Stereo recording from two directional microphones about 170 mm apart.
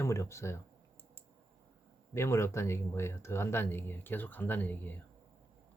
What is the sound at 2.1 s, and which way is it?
Speech, 15° left (ahead or behind).